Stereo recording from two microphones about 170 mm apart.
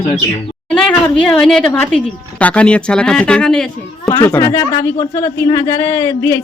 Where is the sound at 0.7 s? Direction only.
5° left (ahead or behind).